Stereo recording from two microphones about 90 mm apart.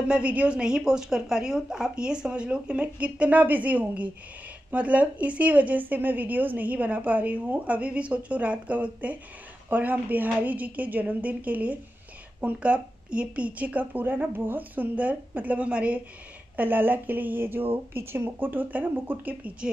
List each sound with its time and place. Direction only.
0.1 s a woman's voice: 15° right (ahead or behind)